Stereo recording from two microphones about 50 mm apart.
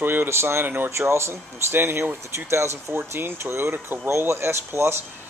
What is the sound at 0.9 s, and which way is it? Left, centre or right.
Speech, right.